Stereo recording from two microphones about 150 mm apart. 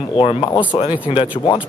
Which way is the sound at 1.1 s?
45° left (ahead or behind).